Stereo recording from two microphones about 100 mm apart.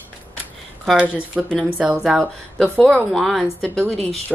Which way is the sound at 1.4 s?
10° right (ahead or behind).